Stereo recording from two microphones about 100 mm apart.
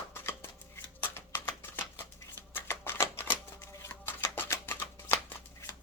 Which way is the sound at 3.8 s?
25° left (ahead or behind).